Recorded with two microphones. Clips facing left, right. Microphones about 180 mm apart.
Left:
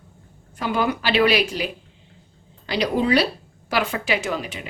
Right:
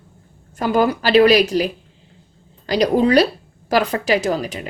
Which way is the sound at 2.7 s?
40° right (ahead or behind).